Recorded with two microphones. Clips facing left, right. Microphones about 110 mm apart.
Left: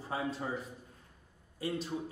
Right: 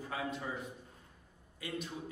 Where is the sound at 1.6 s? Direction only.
30° left (ahead or behind).